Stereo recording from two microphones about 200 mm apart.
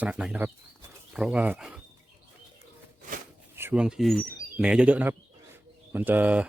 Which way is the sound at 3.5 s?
10° right (ahead or behind).